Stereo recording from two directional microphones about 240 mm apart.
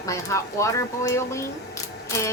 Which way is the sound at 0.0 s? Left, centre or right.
Centre.